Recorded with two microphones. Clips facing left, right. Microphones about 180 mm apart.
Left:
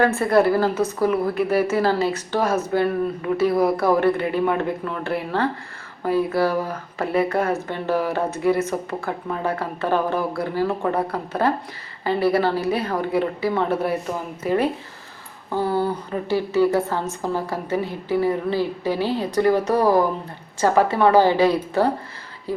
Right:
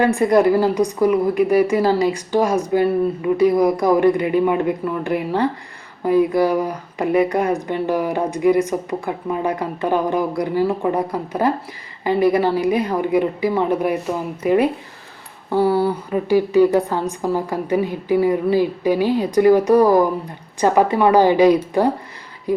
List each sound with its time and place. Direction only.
0.0 s speech: 15° right (ahead or behind)